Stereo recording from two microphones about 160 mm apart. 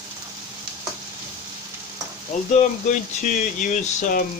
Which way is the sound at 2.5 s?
50° left (ahead or behind).